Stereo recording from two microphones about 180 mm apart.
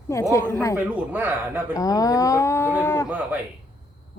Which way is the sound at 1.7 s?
20° left (ahead or behind).